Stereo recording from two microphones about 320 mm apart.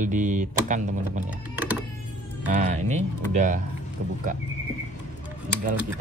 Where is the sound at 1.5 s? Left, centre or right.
Centre.